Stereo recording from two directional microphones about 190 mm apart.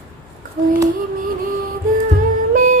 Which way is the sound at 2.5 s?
45° right (ahead or behind).